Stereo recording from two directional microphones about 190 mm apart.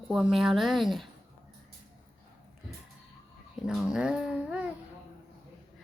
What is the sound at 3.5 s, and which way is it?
A woman's voice, 5° right (ahead or behind).